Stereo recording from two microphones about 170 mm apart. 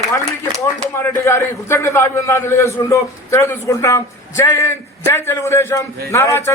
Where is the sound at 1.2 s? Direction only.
15° left (ahead or behind).